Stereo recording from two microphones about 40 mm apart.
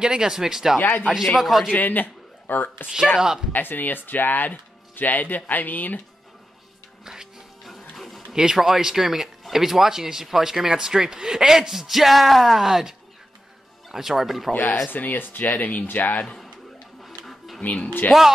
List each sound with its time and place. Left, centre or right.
0.0 s speech: centre
0.7 s speech: left
1.0 s speech: centre
1.7 s speech: left
3.2 s speech: centre
3.5 s speech: left
7.1 s music: centre
7.9 s a sound: centre
8.5 s speech: centre
13.9 s speech: centre
14.5 s speech: left
15.4 s speech: left
17.0 s music: centre
18.1 s speech: centre